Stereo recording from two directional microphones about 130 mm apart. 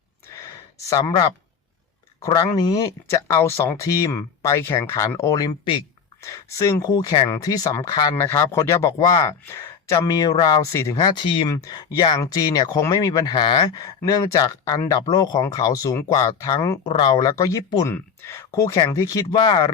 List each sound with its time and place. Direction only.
0.9 s speech: 25° left (ahead or behind)
2.2 s speech: 30° left (ahead or behind)
11.4 s speech: 30° left (ahead or behind)
16.8 s speech: 35° left (ahead or behind)
17.8 s speech: 20° left (ahead or behind); by 19.6 s 35° left (ahead or behind)